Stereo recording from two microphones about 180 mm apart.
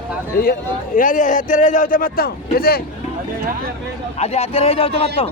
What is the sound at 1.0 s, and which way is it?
A man's voice, 45° left (ahead or behind).